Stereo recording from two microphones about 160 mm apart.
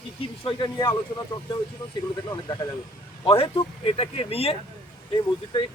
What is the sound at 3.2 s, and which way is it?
Speech, 35° left (ahead or behind).